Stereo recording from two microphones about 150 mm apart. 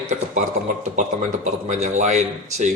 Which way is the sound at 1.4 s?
55° right (ahead or behind).